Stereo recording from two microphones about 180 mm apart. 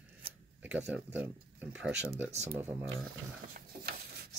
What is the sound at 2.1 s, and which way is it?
Speech, 15° right (ahead or behind).